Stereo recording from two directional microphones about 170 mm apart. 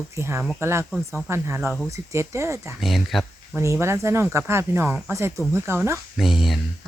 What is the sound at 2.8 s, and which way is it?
Speech, centre (ahead or behind).